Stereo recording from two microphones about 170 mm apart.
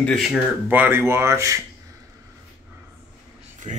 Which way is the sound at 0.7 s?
10° right (ahead or behind).